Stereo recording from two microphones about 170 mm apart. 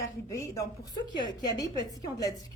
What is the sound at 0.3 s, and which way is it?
A woman's voice, 20° left (ahead or behind).